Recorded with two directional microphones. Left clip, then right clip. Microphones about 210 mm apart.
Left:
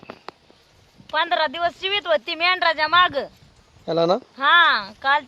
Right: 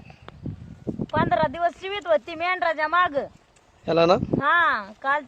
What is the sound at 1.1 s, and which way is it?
Speech, 15° left (ahead or behind).